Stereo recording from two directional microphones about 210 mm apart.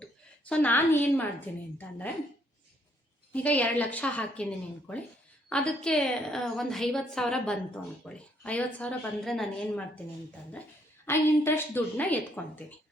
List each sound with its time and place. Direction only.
0.0 s a woman's voice: 5° left (ahead or behind)
3.3 s a woman's voice: 5° left (ahead or behind)
5.5 s a woman's voice: 5° left (ahead or behind)
11.0 s a woman's voice: 10° left (ahead or behind)